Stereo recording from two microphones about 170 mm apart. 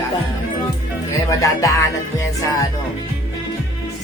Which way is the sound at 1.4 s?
20° left (ahead or behind).